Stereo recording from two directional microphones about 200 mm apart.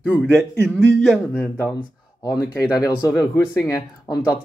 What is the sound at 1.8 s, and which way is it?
Speech, 20° left (ahead or behind).